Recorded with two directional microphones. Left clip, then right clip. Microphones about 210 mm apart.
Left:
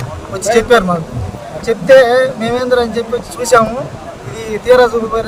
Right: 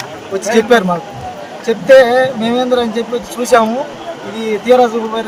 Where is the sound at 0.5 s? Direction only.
25° left (ahead or behind).